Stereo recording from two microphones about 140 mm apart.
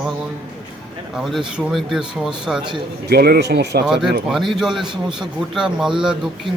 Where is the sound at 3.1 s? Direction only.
90° right.